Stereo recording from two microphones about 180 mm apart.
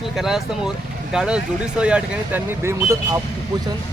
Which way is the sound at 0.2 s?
Centre (ahead or behind).